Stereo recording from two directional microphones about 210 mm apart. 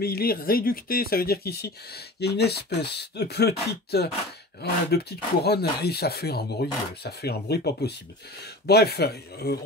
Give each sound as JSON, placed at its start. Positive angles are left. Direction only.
{"t": 0.0, "sound": "speech", "side_deg": 45}